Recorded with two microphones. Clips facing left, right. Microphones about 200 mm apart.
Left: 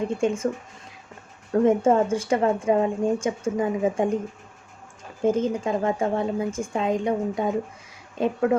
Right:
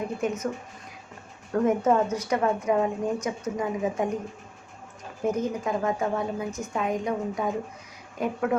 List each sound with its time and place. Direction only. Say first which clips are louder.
0.1 s a woman's voice: left 5 dB; 30° left (ahead or behind)
1.5 s a woman's voice: left 3 dB; 25° left (ahead or behind)
5.2 s a woman's voice: left 4 dB; 25° left (ahead or behind)